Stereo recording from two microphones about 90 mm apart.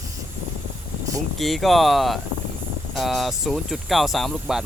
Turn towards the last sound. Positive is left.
turn(degrees=0)  # may be behind; listen again after turning